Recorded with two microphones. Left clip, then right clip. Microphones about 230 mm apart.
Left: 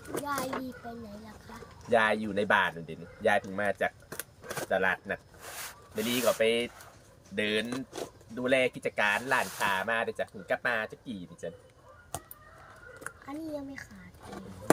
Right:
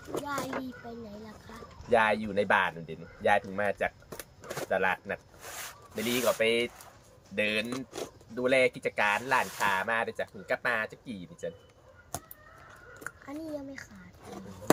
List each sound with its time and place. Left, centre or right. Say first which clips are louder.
0.1 s speech: left 1 dB; centre
1.9 s speech: right 1 dB; centre
4.1 s a sound: left 1 dB; centre
4.7 s speech: even; centre